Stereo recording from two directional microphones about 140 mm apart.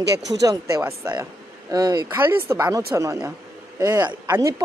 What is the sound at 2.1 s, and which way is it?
Speech, 15° right (ahead or behind).